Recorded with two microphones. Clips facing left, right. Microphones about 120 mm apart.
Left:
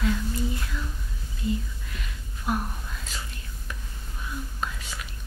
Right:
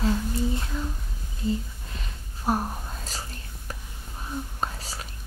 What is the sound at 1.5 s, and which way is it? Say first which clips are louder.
Whispering: right 1 dB; 35° right (ahead or behind).